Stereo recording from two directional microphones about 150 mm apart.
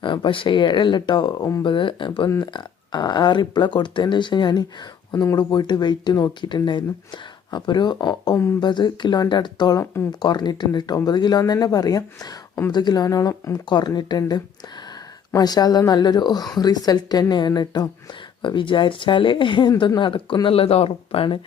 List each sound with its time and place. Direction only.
0.0 s speech: 35° left (ahead or behind)